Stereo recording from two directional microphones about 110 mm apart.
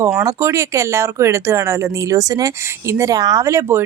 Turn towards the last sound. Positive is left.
turn(degrees=-25)  # may be behind; listen again after turning